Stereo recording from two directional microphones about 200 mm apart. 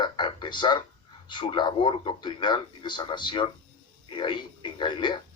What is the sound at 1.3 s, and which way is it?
A man's voice, 25° left (ahead or behind).